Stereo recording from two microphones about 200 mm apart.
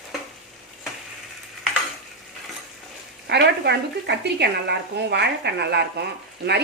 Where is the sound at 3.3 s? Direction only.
55° right (ahead or behind).